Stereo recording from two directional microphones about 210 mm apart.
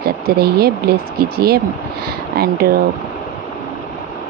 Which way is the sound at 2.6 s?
45° right (ahead or behind).